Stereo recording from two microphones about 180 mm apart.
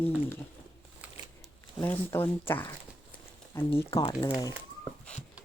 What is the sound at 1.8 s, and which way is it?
Speech, 10° left (ahead or behind).